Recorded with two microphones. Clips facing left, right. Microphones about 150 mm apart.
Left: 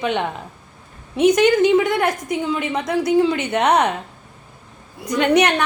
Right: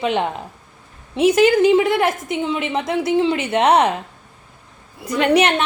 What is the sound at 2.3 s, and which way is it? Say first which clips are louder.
Speech: even; 25° right (ahead or behind).